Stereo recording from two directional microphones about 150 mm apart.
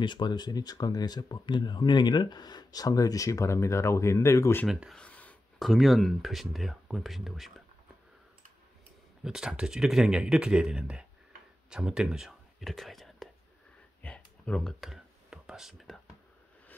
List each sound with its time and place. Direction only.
0.0 s speech: 30° left (ahead or behind)
4.6 s speech: centre (ahead or behind)
9.2 s speech: 5° right (ahead or behind)
14.0 s a sound: 10° left (ahead or behind)